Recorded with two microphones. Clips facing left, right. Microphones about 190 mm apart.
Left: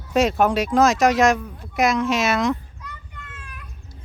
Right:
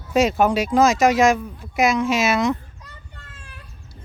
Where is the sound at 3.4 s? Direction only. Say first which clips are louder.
Left 2 dB; 30° right (ahead or behind).